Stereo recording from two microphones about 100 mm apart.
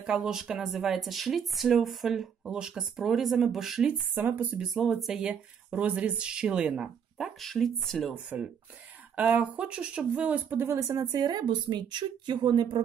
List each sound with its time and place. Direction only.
0.0 s speech: 5° right (ahead or behind)
4.1 s speech: 15° right (ahead or behind)
4.7 s speech: centre (ahead or behind)
8.3 s speech: 15° right (ahead or behind); by 12.8 s 50° right (ahead or behind)